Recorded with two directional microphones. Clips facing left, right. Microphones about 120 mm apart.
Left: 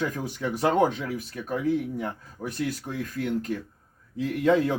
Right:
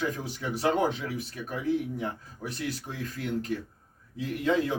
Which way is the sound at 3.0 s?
50° left (ahead or behind).